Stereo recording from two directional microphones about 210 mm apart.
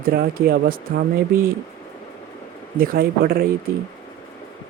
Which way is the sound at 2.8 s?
45° right (ahead or behind).